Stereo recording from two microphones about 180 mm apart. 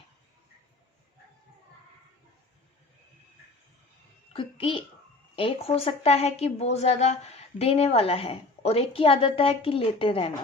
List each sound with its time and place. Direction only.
4.3 s a child's voice: 30° left (ahead or behind)